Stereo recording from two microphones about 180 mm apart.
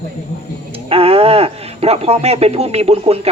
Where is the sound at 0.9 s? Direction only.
30° right (ahead or behind).